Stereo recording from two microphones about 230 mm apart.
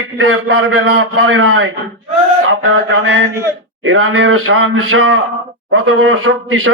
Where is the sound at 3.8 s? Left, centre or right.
Right.